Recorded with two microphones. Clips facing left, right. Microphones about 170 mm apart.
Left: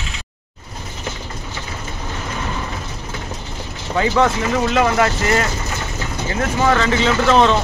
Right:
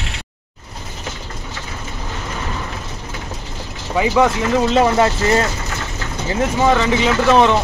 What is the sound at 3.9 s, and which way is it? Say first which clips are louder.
Speech: right 1 dB; 10° right (ahead or behind).